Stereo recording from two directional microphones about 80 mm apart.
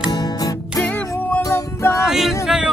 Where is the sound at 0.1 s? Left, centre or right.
Left.